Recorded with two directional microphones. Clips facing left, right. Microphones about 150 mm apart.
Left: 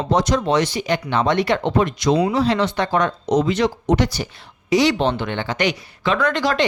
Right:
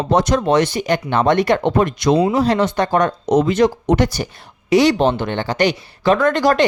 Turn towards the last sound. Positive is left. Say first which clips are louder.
# right 4 dB
turn(degrees=-45)  # may be behind; listen again after turning